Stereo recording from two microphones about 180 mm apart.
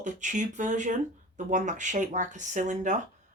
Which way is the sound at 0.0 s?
45° right (ahead or behind).